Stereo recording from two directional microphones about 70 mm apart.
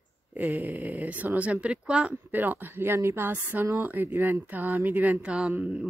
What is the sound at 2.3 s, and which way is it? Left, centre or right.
A woman's voice, right.